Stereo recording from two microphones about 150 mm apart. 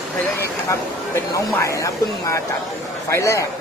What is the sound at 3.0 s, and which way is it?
Speech, 20° left (ahead or behind).